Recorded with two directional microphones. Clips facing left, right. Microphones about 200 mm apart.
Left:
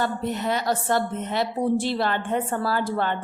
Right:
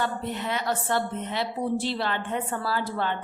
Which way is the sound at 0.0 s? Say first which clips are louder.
Left 4 dB; 40° left (ahead or behind).